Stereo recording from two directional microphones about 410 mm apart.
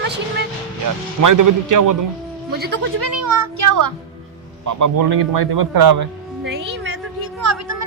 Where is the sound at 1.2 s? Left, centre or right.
Right.